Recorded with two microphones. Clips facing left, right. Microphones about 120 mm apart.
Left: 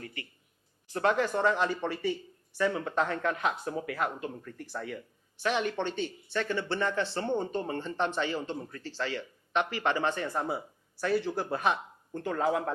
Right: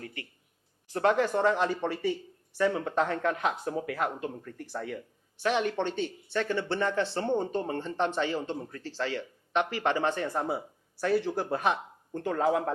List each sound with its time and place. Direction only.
0.0 s a sound: 50° right (ahead or behind)
0.9 s speech: 50° right (ahead or behind)
11.8 s speech: 40° right (ahead or behind)